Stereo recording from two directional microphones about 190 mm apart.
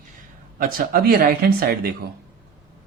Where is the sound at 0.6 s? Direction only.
50° right (ahead or behind).